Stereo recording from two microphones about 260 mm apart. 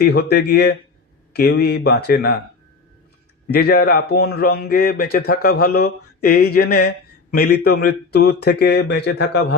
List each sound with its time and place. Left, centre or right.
0.0 s speech: left
3.5 s speech: left